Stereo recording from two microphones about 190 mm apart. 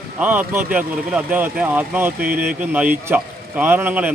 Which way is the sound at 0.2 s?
10° right (ahead or behind).